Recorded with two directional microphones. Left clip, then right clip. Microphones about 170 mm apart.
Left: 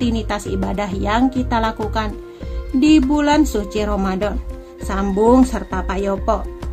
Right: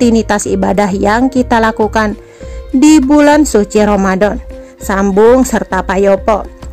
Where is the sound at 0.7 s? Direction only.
50° right (ahead or behind).